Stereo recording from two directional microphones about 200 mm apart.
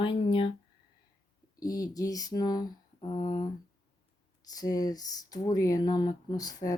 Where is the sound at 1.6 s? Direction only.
20° left (ahead or behind).